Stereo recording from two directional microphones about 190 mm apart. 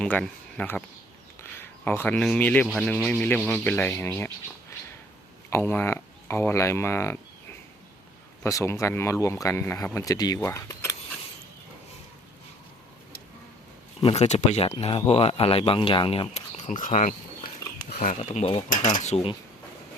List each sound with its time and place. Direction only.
0.0 s speech: 5° left (ahead or behind)
5.5 s speech: 10° left (ahead or behind)
8.4 s speech: 15° left (ahead or behind)
14.0 s speech: 35° left (ahead or behind)